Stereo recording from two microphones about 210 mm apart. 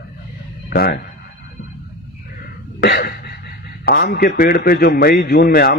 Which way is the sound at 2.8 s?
50° left (ahead or behind).